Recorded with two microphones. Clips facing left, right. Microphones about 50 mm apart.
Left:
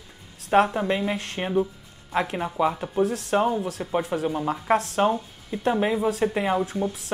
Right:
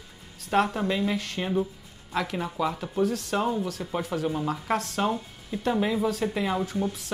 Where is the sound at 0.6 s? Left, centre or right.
Centre.